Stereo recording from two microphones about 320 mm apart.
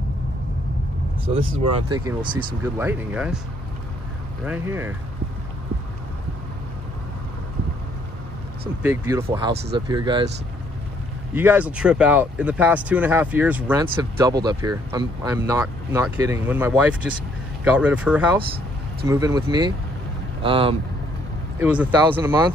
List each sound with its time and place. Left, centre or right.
1.3 s speech: centre
4.5 s speech: centre
8.8 s speech: centre
9.5 s speech: right
9.8 s speech: centre
11.3 s speech: centre
21.5 s speech: centre